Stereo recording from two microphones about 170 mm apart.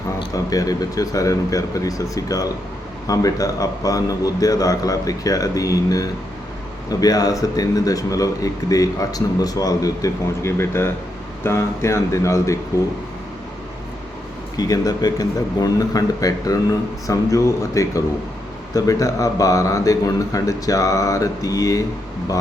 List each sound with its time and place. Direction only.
0.2 s speech: 20° left (ahead or behind)
14.5 s speech: 20° left (ahead or behind)